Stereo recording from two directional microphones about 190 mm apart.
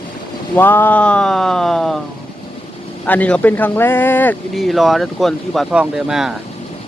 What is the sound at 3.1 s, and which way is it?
Speech, 5° left (ahead or behind).